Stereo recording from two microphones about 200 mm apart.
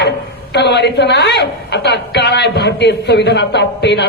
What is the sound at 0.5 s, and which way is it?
A woman's voice, 60° left (ahead or behind).